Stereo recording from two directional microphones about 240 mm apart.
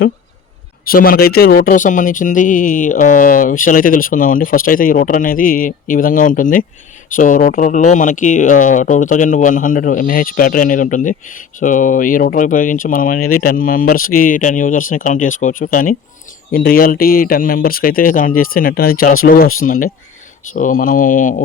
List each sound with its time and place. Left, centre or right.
0.9 s speech: left